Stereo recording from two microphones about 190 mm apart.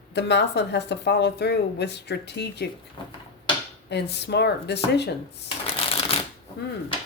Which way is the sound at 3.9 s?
60° left (ahead or behind).